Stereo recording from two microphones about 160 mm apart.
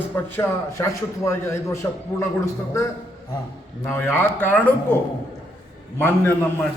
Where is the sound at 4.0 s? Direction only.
15° left (ahead or behind).